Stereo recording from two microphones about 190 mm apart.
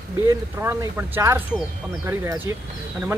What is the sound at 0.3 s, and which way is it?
Speech, 15° right (ahead or behind).